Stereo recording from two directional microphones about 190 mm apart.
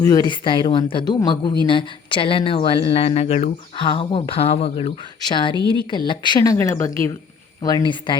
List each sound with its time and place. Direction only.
0.0 s speech: 20° left (ahead or behind)